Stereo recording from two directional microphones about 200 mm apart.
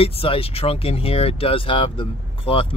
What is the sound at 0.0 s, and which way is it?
Speech, 30° left (ahead or behind).